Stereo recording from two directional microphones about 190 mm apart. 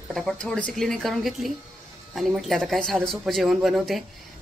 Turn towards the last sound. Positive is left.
turn(degrees=0)  # may be behind; listen again after turning